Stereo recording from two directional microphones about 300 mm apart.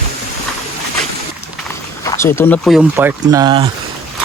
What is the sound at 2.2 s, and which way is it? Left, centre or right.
Speech, centre.